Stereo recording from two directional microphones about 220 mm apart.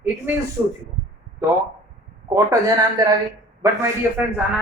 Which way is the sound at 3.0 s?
15° right (ahead or behind).